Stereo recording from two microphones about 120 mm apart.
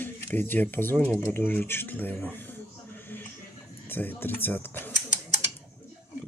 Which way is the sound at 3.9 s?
15° left (ahead or behind).